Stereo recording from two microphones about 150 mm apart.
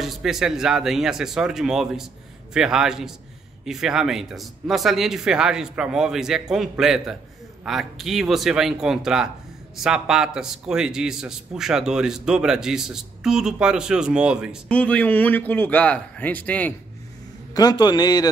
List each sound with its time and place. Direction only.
0.0 s a man's voice: centre (ahead or behind)
14.7 s a man's voice: 10° left (ahead or behind)
17.6 s a man's voice: 25° left (ahead or behind)